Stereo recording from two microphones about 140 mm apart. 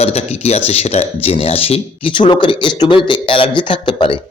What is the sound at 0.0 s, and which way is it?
Speech, 50° left (ahead or behind).